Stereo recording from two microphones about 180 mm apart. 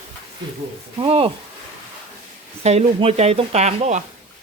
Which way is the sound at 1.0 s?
30° right (ahead or behind).